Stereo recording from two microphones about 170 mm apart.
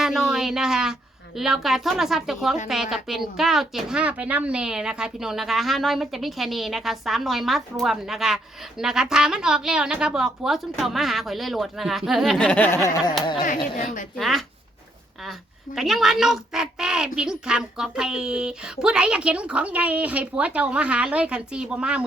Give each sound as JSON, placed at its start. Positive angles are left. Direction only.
{"t": 0.0, "sound": "a sound", "side_deg": -5}
{"t": 1.4, "sound": "a woman's voice", "side_deg": 0}
{"t": 13.7, "sound": "a woman's voice", "side_deg": 50}
{"t": 14.2, "sound": "a woman's voice", "side_deg": 0}